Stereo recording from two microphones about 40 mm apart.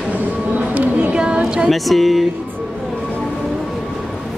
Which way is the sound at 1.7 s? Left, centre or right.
Centre.